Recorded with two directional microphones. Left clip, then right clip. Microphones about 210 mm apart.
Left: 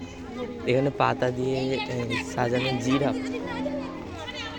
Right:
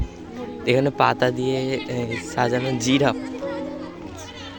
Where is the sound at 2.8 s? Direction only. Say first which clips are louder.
Right 6 dB; 30° right (ahead or behind).